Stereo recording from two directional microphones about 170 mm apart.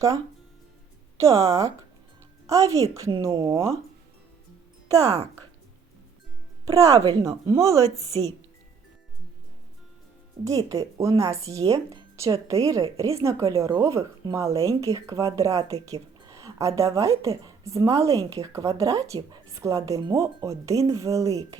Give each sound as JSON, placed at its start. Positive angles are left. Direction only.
{"t": 1.2, "sound": "speech", "side_deg": -20}
{"t": 6.7, "sound": "speech", "side_deg": -20}
{"t": 10.4, "sound": "speech", "side_deg": -20}